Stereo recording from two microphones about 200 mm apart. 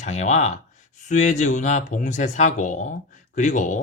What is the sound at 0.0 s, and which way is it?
Speech, 35° left (ahead or behind).